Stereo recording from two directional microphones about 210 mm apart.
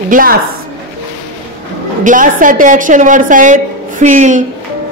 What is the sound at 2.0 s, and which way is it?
A woman's voice, 40° right (ahead or behind).